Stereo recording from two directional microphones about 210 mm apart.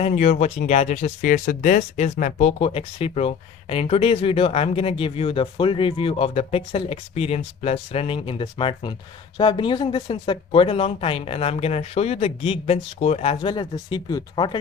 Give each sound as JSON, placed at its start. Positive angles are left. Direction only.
{"t": 0.0, "sound": "speech", "side_deg": 35}